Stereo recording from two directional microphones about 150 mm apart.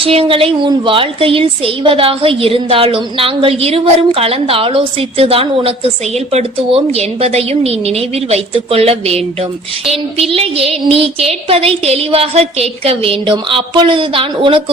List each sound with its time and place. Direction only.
0.0 s a woman's voice: 40° right (ahead or behind)